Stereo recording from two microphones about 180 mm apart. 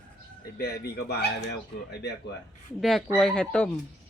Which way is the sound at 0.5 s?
60° left (ahead or behind).